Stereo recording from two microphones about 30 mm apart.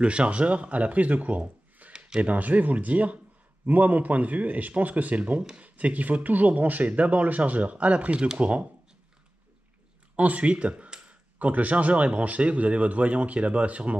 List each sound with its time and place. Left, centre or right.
0.0 s speech: right
1.9 s a sound: right
2.2 s speech: right
10.1 s speech: right